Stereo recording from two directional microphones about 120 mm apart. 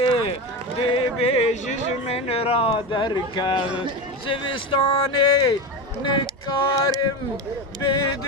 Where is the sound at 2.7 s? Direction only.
40° left (ahead or behind).